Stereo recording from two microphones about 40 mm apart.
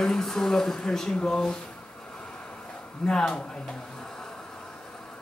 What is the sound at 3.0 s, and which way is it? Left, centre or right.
Speech, centre.